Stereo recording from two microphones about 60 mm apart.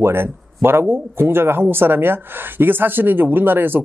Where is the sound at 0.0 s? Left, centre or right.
Right.